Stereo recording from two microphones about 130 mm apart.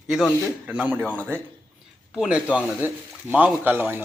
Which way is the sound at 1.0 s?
10° left (ahead or behind).